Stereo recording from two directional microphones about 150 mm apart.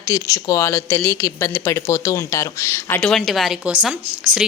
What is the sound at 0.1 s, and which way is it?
Speech, 20° left (ahead or behind).